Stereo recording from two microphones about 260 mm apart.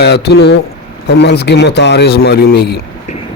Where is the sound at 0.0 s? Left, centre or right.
Left.